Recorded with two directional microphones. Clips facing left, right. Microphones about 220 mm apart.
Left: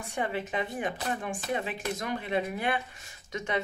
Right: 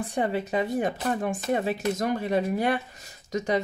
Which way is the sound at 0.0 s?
35° right (ahead or behind).